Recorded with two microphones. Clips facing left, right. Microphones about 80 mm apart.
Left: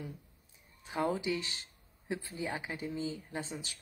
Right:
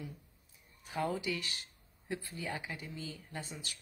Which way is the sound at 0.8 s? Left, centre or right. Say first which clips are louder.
Left 3 dB; left.